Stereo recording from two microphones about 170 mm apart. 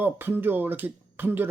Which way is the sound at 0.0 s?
10° right (ahead or behind).